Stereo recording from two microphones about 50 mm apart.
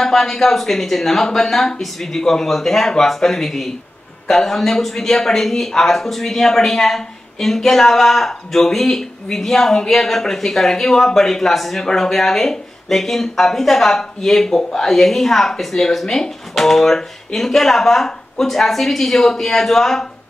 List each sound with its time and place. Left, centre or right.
0.0 s speech: centre